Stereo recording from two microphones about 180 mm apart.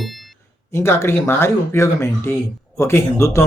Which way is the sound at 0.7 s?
15° left (ahead or behind).